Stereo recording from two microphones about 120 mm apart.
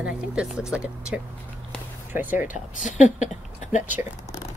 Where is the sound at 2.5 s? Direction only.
90° left.